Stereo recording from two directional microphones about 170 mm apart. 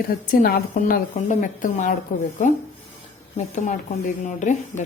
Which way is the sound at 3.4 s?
45° left (ahead or behind).